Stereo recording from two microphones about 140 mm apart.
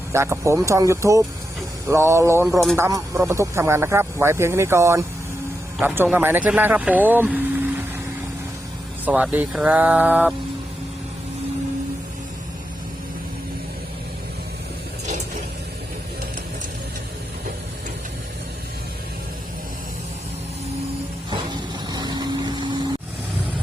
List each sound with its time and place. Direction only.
0.1 s speech: 20° right (ahead or behind)
2.5 s speech: centre (ahead or behind)
2.7 s speech: 20° right (ahead or behind)
9.0 s speech: 10° right (ahead or behind)
21.2 s vehicle: 30° right (ahead or behind)